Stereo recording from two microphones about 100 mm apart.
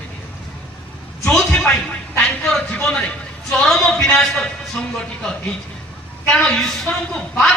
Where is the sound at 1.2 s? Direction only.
5° left (ahead or behind).